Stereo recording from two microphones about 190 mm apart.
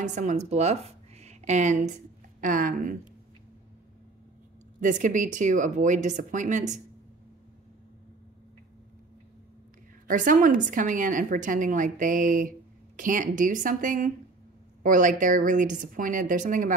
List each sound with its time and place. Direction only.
0.0 s a woman's voice: 40° right (ahead or behind)
4.7 s speech: 40° right (ahead or behind)
10.0 s a woman's voice: 45° right (ahead or behind)